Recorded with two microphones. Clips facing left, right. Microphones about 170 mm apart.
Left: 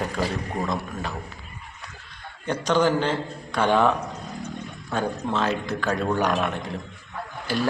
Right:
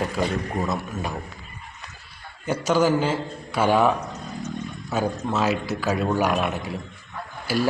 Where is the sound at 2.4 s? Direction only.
5° right (ahead or behind).